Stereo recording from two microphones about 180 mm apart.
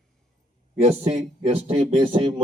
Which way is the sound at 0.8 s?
35° right (ahead or behind).